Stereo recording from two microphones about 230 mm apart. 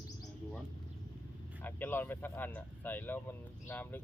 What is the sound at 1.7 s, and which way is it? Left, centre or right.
Speech, centre.